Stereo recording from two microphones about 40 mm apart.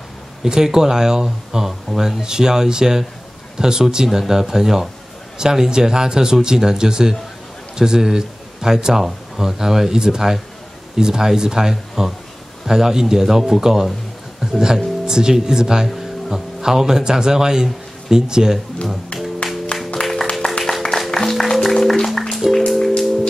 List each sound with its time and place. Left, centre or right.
0.4 s speech: centre
19.9 s music: centre